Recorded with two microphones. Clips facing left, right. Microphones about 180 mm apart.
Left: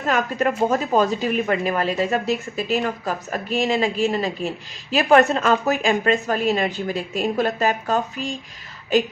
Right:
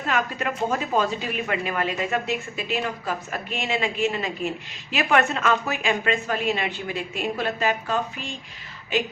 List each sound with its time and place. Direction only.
0.1 s a woman's voice: 40° left (ahead or behind)